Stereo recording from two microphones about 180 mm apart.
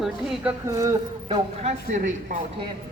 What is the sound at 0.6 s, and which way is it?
Speech, 15° right (ahead or behind).